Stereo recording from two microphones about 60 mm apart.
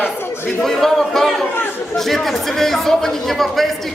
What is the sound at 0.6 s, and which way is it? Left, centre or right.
A man's voice, centre.